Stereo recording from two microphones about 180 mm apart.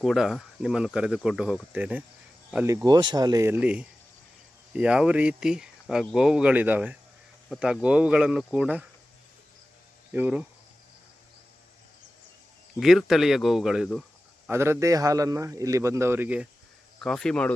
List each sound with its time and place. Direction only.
0.0 s a man's voice: centre (ahead or behind)
2.8 s speech: 25° right (ahead or behind); by 8.9 s 5° right (ahead or behind)
10.1 s speech: 10° right (ahead or behind)
12.8 s speech: centre (ahead or behind)
14.4 s a man's voice: 15° right (ahead or behind)
17.0 s speech: 5° left (ahead or behind)